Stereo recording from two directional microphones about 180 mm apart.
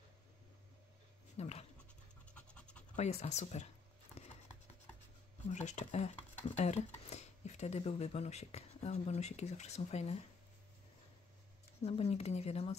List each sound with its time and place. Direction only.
1.3 s speech: 35° left (ahead or behind)
2.3 s pant: 5° left (ahead or behind)
3.0 s speech: 35° left (ahead or behind)
5.5 s speech: 40° left (ahead or behind)
11.8 s speech: 35° left (ahead or behind)